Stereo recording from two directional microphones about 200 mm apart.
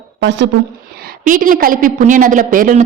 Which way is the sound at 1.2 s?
40° right (ahead or behind).